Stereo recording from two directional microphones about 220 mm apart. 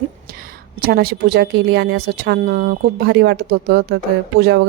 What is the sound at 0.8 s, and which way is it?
A woman's voice, 45° right (ahead or behind).